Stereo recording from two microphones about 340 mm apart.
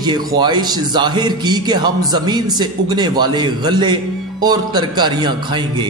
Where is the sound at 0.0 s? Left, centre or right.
Centre.